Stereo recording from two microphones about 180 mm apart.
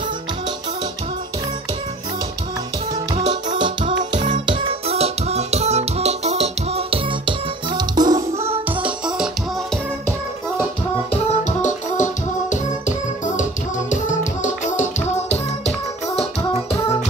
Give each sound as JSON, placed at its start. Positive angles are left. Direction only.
{"t": 3.2, "sound": "music", "side_deg": -40}
{"t": 3.5, "sound": "music", "side_deg": -25}
{"t": 8.8, "sound": "music", "side_deg": -5}
{"t": 11.1, "sound": "music", "side_deg": 40}